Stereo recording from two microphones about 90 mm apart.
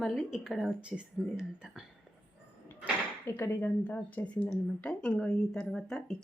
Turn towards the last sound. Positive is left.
turn(degrees=5)  # may be behind; listen again after turning